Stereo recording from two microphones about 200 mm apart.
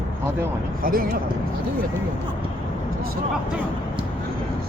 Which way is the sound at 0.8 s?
45° right (ahead or behind).